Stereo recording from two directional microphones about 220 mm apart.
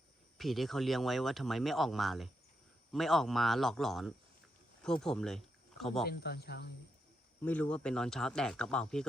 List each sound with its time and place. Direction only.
0.3 s speech: centre (ahead or behind)
6.1 s speech: 45° left (ahead or behind)
7.4 s speech: 5° left (ahead or behind)